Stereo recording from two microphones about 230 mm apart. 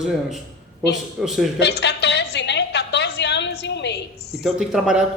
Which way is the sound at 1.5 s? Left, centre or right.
Left.